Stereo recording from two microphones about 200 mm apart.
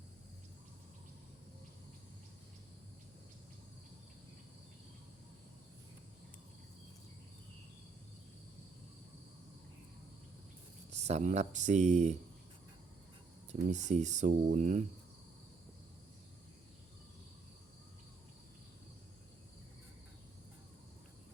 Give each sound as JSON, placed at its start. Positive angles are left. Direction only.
{"t": 10.9, "sound": "speech", "side_deg": -35}
{"t": 13.5, "sound": "speech", "side_deg": -35}